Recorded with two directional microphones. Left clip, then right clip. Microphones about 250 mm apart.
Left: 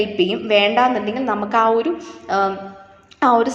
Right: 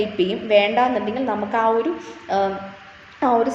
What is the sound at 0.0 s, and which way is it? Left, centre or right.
A woman's voice, centre.